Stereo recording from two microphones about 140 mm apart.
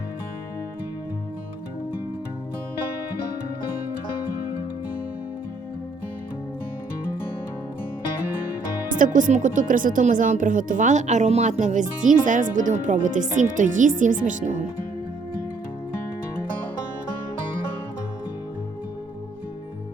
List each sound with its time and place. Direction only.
8.9 s speech: 70° right (ahead or behind)